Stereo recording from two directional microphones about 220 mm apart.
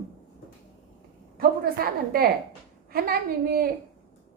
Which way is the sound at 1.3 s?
45° right (ahead or behind).